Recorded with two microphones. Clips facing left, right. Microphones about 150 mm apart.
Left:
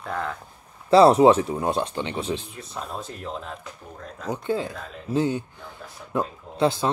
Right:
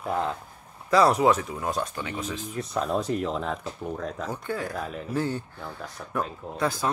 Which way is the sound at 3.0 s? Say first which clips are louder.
Right 7 dB; 90° right.